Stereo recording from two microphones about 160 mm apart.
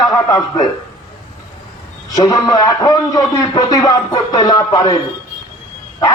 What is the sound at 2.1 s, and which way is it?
A man's voice, 25° left (ahead or behind).